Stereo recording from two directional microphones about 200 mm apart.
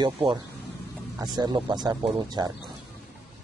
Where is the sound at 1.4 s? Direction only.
20° right (ahead or behind).